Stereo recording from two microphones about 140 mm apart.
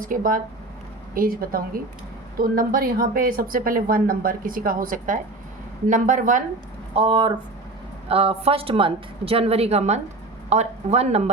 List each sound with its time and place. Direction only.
0.0 s speech: 75° right (ahead or behind)
1.1 s a woman's voice: 90° right; by 6.4 s 70° right (ahead or behind)
6.9 s a woman's voice: 40° right (ahead or behind)